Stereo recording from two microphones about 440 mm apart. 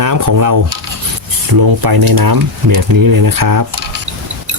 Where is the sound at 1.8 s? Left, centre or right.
Right.